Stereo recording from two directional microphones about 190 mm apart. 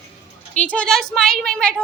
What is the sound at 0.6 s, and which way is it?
Speech, 5° left (ahead or behind).